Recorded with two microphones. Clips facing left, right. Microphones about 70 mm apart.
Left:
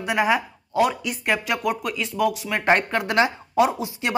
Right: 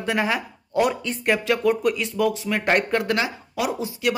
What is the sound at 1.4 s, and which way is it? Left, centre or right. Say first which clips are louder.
Speech: right 4 dB; centre.